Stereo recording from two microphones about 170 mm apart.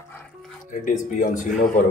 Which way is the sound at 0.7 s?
50° left (ahead or behind).